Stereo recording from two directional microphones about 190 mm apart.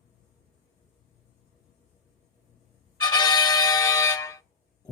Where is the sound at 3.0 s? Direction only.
20° left (ahead or behind).